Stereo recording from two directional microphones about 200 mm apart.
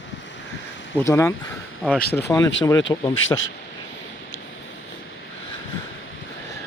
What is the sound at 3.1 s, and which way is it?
Speech, 80° left.